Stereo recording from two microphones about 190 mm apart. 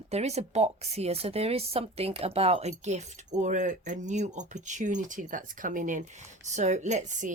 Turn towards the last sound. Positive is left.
turn(degrees=-40)  # may be behind; listen again after turning